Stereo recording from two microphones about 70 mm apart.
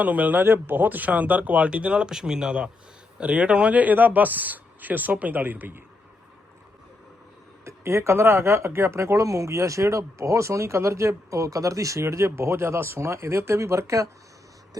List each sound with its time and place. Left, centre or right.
0.0 s speech: right
7.6 s speech: right